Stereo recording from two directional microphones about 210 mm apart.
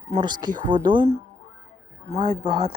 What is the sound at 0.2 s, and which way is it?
Speech, 20° right (ahead or behind).